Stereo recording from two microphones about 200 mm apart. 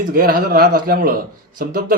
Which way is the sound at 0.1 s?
45° right (ahead or behind).